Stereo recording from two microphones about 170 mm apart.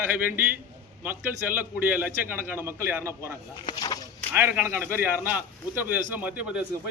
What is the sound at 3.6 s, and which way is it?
Speech, 25° left (ahead or behind).